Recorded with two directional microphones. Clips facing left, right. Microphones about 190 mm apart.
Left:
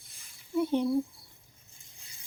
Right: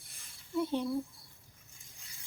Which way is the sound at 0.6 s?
20° left (ahead or behind).